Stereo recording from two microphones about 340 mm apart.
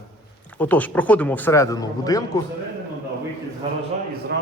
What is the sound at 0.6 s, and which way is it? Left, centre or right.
Speech, centre.